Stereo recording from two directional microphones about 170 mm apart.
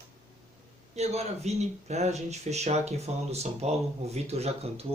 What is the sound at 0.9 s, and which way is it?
Speech, 40° right (ahead or behind).